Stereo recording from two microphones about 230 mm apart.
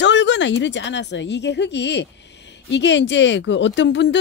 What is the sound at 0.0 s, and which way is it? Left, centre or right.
Speech, left.